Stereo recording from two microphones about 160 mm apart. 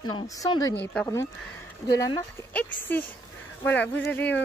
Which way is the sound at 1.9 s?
25° left (ahead or behind).